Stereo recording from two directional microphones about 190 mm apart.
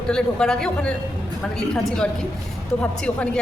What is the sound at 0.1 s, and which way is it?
A man's voice, 5° left (ahead or behind).